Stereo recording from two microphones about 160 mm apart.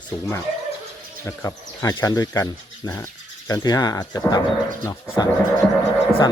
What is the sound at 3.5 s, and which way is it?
Speech, 25° left (ahead or behind).